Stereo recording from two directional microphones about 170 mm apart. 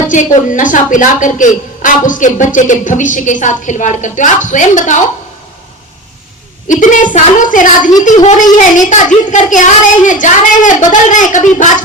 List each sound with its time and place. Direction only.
0.1 s a man's voice: 50° left (ahead or behind)
6.7 s a man's voice: 50° left (ahead or behind)